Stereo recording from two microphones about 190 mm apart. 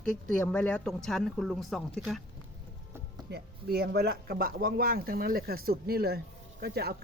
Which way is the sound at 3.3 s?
55° right (ahead or behind).